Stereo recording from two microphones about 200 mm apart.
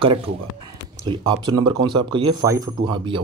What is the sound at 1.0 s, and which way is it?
Speech, 20° right (ahead or behind).